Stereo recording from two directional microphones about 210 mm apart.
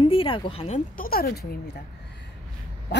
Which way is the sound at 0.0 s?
25° left (ahead or behind).